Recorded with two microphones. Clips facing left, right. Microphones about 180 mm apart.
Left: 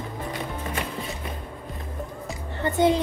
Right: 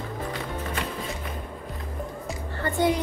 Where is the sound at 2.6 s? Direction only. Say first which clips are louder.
Left 3 dB; 20° left (ahead or behind).